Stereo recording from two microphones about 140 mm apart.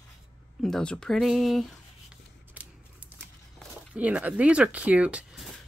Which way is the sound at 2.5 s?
10° right (ahead or behind).